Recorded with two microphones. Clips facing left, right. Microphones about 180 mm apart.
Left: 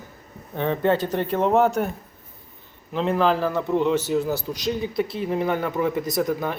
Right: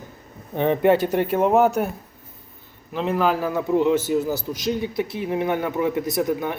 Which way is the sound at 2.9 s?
5° right (ahead or behind).